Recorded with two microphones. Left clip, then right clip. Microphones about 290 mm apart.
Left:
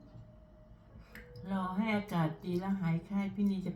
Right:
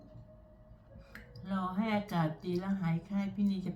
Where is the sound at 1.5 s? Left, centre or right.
Centre.